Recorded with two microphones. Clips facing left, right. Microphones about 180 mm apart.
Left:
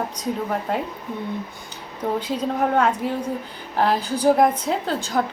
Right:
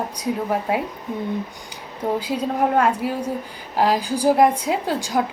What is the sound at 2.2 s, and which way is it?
A woman's voice, 10° right (ahead or behind).